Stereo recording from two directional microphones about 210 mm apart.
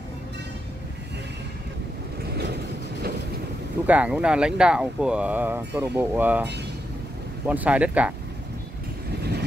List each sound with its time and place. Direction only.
2.3 s vehicle: 50° right (ahead or behind)
3.8 s speech: 5° right (ahead or behind)